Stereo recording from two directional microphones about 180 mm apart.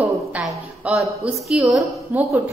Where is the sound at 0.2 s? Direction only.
5° right (ahead or behind).